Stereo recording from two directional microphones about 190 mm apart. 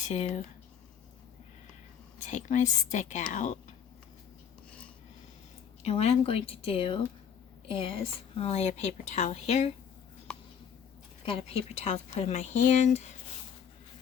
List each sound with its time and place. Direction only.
0.0 s speech: 35° left (ahead or behind)
2.1 s a woman's voice: 40° left (ahead or behind)
5.8 s a woman's voice: 35° left (ahead or behind)
10.3 s a sound: 5° left (ahead or behind)
11.3 s a woman's voice: 30° left (ahead or behind)